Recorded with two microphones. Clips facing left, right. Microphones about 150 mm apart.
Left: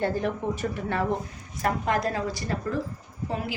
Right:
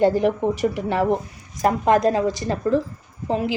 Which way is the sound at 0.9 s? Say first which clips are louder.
Right 4 dB; 20° right (ahead or behind).